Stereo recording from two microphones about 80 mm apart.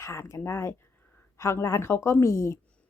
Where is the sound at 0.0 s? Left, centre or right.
Left.